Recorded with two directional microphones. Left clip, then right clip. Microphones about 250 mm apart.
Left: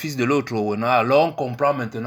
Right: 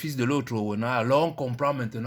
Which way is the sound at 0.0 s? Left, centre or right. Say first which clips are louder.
Left 6 dB; right.